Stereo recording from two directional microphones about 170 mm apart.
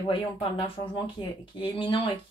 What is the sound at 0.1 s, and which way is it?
Speech, 30° left (ahead or behind).